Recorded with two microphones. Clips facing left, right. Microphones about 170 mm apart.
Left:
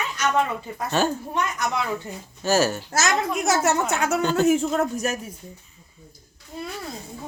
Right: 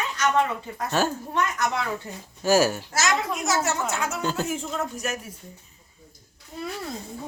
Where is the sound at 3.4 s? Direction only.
60° left (ahead or behind).